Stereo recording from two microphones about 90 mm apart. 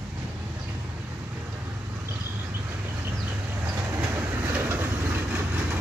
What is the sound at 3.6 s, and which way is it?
Train, 30° right (ahead or behind).